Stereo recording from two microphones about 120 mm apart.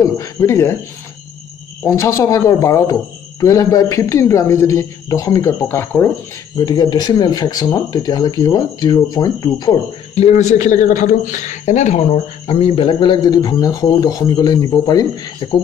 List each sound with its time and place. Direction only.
0.0 s speech: 25° left (ahead or behind)
1.9 s speech: 25° left (ahead or behind)
6.6 s speech: 35° left (ahead or behind)
10.1 s a man's voice: 65° left (ahead or behind); by 11.0 s 90° left
11.4 s a man's voice: 70° left (ahead or behind)
12.4 s speech: 50° left (ahead or behind); by 15.5 s 35° left (ahead or behind)